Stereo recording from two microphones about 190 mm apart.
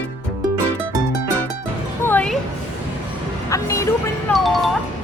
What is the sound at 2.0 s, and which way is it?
Music, 10° left (ahead or behind).